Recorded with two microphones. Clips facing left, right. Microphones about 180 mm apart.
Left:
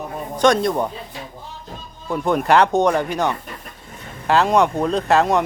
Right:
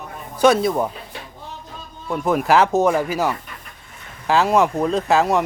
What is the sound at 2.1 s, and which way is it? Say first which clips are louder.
Speech: even; centre (ahead or behind).